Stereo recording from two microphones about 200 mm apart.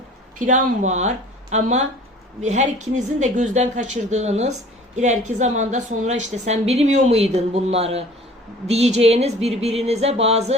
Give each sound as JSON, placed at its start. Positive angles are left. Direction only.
{"t": 0.3, "sound": "a woman's voice", "side_deg": -40}